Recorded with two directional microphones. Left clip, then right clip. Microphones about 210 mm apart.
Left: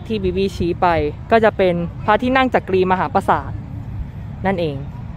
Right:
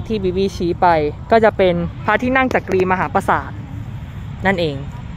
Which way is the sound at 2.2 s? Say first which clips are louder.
Even; 20° left (ahead or behind).